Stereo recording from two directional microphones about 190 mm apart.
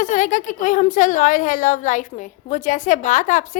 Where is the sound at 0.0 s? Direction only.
40° left (ahead or behind).